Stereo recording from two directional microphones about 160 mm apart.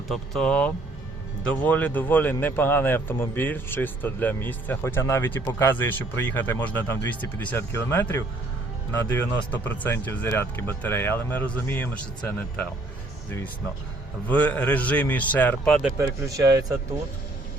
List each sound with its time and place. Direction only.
0.1 s speech: 5° left (ahead or behind)
14.3 s speech: 10° left (ahead or behind)
16.0 s a man's voice: 20° right (ahead or behind)